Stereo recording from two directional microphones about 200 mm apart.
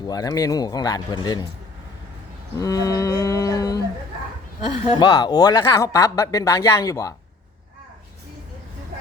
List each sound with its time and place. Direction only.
0.0 s speech: 20° left (ahead or behind)
2.6 s speech: 15° left (ahead or behind)
4.9 s speech: 20° left (ahead or behind)